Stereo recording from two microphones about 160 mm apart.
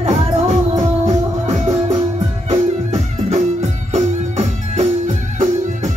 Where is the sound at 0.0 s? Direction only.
45° right (ahead or behind).